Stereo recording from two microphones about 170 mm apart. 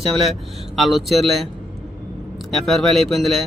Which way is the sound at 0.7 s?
Centre (ahead or behind).